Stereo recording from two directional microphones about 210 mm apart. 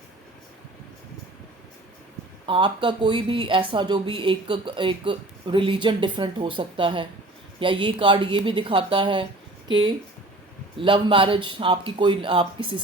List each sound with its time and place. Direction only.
2.5 s speech: 25° right (ahead or behind)
10.8 s speech: 25° right (ahead or behind)